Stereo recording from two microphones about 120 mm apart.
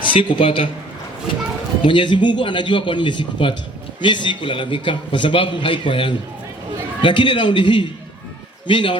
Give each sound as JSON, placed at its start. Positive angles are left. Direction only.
{"t": 0.0, "sound": "a man's voice", "side_deg": 45}
{"t": 1.8, "sound": "a man's voice", "side_deg": 45}